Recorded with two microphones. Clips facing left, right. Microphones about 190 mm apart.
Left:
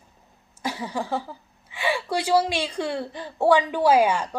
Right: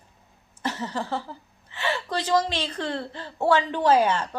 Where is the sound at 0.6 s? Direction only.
10° left (ahead or behind).